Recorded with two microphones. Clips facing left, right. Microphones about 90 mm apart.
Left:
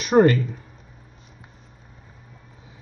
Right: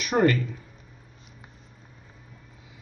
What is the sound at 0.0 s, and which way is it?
Speech, 30° left (ahead or behind).